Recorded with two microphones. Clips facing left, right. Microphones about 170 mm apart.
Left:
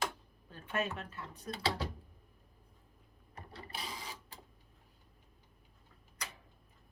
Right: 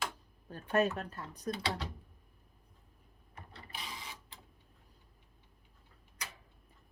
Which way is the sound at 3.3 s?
35° left (ahead or behind).